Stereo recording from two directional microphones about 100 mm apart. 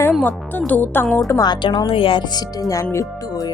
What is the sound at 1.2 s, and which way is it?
Speech, 35° left (ahead or behind).